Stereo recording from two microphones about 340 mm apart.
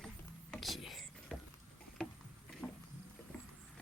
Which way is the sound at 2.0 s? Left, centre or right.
Centre.